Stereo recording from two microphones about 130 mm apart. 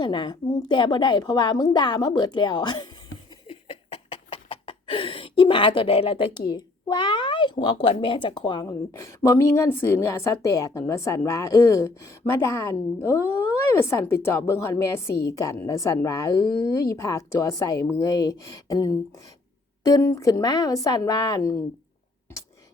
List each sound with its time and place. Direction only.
0.0 s a woman's voice: 35° left (ahead or behind)
3.5 s a sound: 45° left (ahead or behind)
8.0 s a woman's voice: 40° left (ahead or behind)
8.6 s a woman's voice: 25° left (ahead or behind)